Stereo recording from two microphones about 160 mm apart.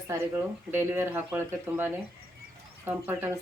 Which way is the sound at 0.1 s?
20° right (ahead or behind).